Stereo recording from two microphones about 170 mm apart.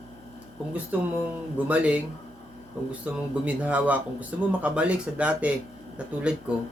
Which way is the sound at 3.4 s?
10° right (ahead or behind).